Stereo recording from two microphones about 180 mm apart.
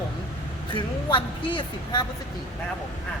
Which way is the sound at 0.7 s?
30° left (ahead or behind).